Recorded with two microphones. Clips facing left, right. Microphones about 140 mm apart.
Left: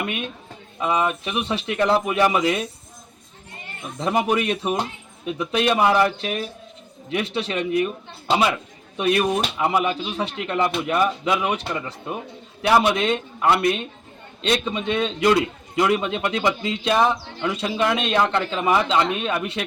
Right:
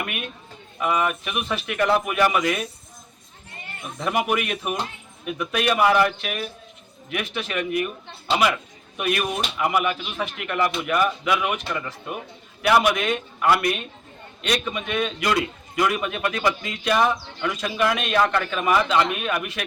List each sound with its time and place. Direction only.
0.0 s a man's voice: 25° left (ahead or behind)
4.3 s a man's voice: 30° left (ahead or behind)
9.0 s a man's voice: 30° left (ahead or behind)